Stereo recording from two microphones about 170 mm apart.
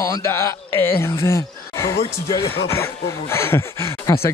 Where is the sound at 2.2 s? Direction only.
35° left (ahead or behind).